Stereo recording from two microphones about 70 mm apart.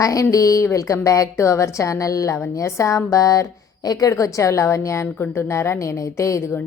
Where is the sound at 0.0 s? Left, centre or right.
Left.